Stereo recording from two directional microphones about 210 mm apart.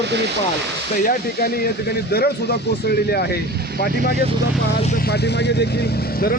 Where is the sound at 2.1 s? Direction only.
50° left (ahead or behind).